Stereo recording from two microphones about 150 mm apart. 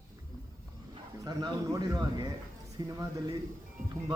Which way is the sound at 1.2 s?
25° right (ahead or behind).